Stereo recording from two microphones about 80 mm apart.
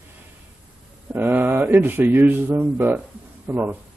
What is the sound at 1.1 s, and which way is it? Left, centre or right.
A man's voice, right.